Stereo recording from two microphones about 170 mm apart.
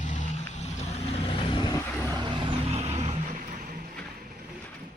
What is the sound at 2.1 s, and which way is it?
Vehicle, 30° right (ahead or behind).